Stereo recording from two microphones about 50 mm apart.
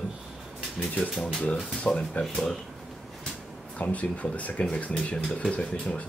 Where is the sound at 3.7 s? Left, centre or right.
Left.